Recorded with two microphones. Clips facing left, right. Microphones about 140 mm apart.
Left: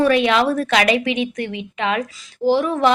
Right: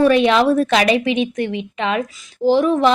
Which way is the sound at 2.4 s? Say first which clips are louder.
Right 2 dB; 15° right (ahead or behind).